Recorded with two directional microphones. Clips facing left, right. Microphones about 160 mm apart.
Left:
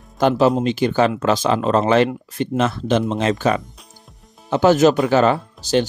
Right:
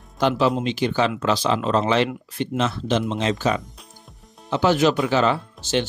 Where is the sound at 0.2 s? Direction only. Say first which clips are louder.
Left 4 dB; 45° left (ahead or behind).